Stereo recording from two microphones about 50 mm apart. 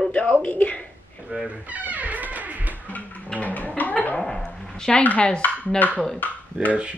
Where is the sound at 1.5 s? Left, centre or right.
Right.